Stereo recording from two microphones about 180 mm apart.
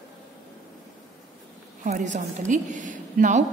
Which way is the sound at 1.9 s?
40° right (ahead or behind).